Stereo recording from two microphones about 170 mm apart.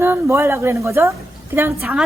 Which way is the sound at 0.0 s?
15° right (ahead or behind).